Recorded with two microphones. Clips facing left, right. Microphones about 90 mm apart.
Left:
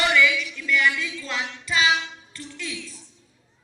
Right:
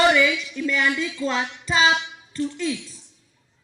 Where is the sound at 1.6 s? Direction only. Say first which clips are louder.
Right 2 dB; 30° right (ahead or behind).